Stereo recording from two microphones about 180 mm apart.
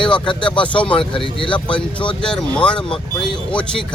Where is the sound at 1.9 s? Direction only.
5° left (ahead or behind).